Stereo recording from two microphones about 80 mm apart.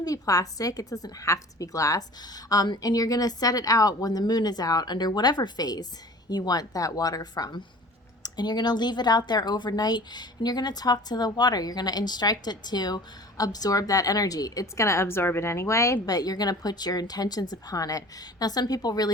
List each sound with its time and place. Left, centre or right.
0.0 s a woman's voice: left
16.1 s speech: left